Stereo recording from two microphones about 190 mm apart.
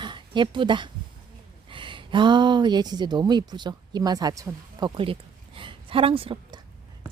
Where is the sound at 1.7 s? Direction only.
25° right (ahead or behind).